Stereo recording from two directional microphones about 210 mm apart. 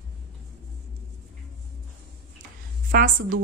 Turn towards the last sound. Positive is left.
turn(degrees=-40)  # may be behind; listen again after turning